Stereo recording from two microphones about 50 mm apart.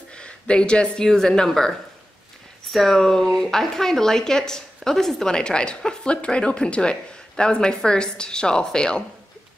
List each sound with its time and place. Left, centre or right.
0.1 s a woman's voice: left